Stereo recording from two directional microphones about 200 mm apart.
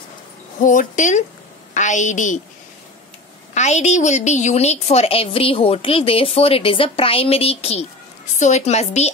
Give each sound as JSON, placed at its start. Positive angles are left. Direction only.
{"t": 0.6, "sound": "a woman's voice", "side_deg": 40}
{"t": 3.5, "sound": "a woman's voice", "side_deg": 35}